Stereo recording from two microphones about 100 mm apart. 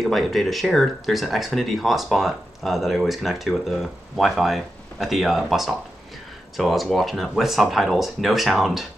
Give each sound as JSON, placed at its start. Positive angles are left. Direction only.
{"t": 0.0, "sound": "speech", "side_deg": 0}